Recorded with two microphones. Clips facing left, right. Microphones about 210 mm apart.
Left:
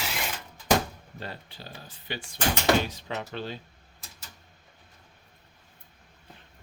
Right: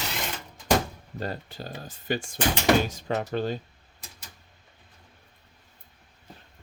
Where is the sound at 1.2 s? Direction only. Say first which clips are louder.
Right 7 dB; 45° right (ahead or behind).